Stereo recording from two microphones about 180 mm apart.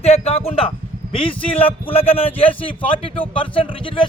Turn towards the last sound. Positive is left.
turn(degrees=30)  # may be behind; listen again after turning